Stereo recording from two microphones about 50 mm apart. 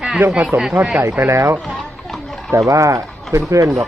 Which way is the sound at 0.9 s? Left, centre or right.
Right.